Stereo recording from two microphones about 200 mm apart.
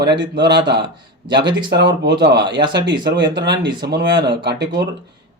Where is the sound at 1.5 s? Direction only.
60° right (ahead or behind).